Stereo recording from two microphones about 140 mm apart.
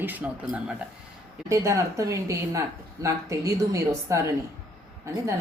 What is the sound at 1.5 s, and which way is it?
A woman's voice, 20° right (ahead or behind).